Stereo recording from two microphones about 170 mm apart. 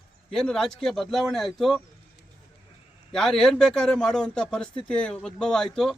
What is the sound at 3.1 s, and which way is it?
Speech, 5° left (ahead or behind).